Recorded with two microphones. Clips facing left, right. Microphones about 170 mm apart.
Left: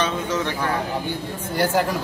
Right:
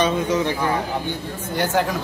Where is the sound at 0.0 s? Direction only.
15° right (ahead or behind).